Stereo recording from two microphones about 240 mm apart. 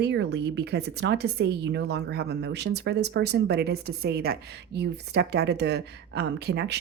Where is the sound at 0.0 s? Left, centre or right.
Right.